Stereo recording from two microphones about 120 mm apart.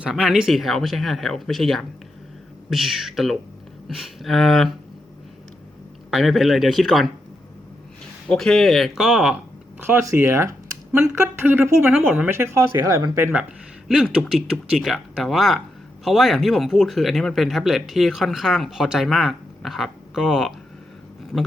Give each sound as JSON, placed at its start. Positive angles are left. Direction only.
{"t": 0.0, "sound": "speech", "side_deg": -5}
{"t": 6.1, "sound": "speech", "side_deg": 0}
{"t": 8.3, "sound": "speech", "side_deg": 5}
{"t": 9.8, "sound": "speech", "side_deg": -20}
{"t": 13.8, "sound": "speech", "side_deg": -5}